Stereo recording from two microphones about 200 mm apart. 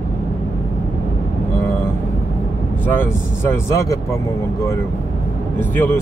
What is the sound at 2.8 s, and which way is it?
Speech, 10° left (ahead or behind).